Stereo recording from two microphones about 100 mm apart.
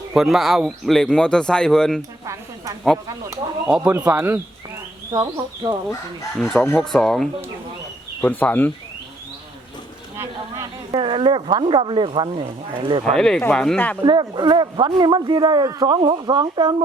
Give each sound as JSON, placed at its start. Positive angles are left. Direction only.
{"t": 0.1, "sound": "speech", "side_deg": 0}
{"t": 2.0, "sound": "a sound", "side_deg": -35}
{"t": 3.7, "sound": "speech", "side_deg": -10}
{"t": 5.1, "sound": "speech", "side_deg": -40}
{"t": 6.4, "sound": "speech", "side_deg": 5}
{"t": 8.2, "sound": "speech", "side_deg": 15}
{"t": 10.2, "sound": "speech", "side_deg": -30}
{"t": 10.9, "sound": "speech", "side_deg": -60}
{"t": 13.1, "sound": "speech", "side_deg": 5}
{"t": 13.7, "sound": "speech", "side_deg": 15}
{"t": 14.0, "sound": "speech", "side_deg": -50}